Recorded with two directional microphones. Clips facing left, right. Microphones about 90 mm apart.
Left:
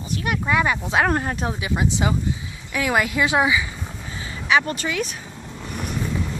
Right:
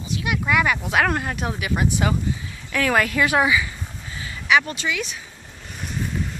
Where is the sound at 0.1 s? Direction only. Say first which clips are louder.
Even; 40° left (ahead or behind).